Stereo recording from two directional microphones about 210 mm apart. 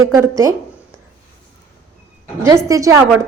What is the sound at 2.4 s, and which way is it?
Speech, 15° right (ahead or behind).